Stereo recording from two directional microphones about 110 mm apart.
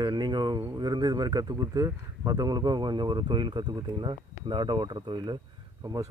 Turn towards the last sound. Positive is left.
turn(degrees=-30)  # may be behind; listen again after turning